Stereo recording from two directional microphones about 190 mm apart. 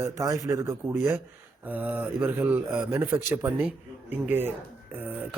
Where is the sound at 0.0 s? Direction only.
15° right (ahead or behind).